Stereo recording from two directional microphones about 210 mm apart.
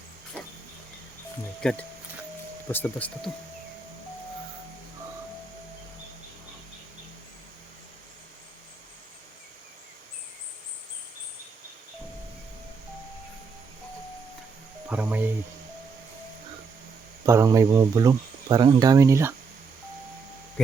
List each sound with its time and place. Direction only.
1.6 s speech: 5° left (ahead or behind)
14.8 s speech: 10° right (ahead or behind)
17.2 s speech: 15° right (ahead or behind)